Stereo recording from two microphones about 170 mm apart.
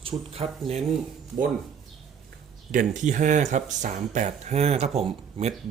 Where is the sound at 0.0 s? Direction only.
35° right (ahead or behind).